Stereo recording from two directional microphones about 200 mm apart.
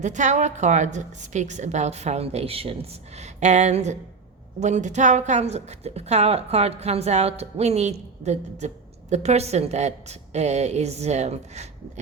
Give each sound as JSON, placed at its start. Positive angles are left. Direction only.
{"t": 0.0, "sound": "a woman's voice", "side_deg": -35}